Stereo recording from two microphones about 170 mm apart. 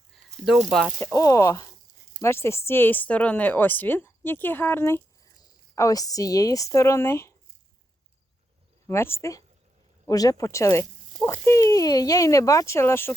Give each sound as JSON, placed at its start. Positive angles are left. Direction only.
{"t": 0.7, "sound": "speech", "side_deg": 0}
{"t": 1.0, "sound": "speech", "side_deg": 20}
{"t": 8.9, "sound": "speech", "side_deg": 15}